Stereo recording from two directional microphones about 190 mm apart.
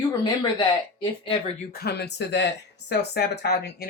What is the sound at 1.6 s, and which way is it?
Speech, 55° left (ahead or behind).